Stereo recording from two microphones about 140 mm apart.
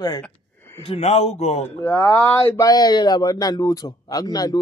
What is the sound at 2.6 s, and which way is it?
A man's voice, 30° left (ahead or behind).